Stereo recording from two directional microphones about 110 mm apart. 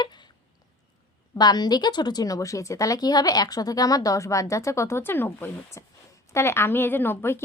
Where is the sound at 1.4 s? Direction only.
40° left (ahead or behind); by 7.4 s 20° left (ahead or behind).